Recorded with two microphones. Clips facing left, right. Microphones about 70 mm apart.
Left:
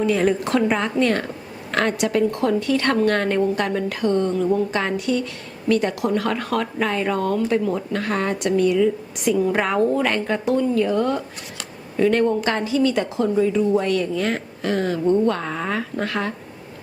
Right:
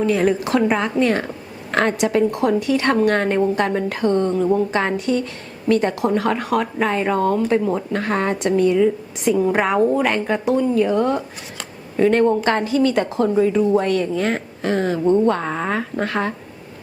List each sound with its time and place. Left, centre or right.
0.1 s a woman's voice: centre
1.7 s speech: right
11.9 s a woman's voice: right